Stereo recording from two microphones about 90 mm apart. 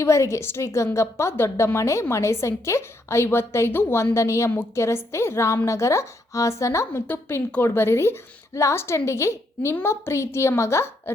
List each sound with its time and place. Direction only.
0.0 s a woman's voice: 35° left (ahead or behind)
7.1 s a woman's voice: 25° left (ahead or behind)